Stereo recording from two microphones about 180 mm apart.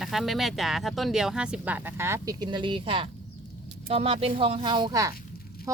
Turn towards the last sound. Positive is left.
turn(degrees=-20)  # may be behind; listen again after turning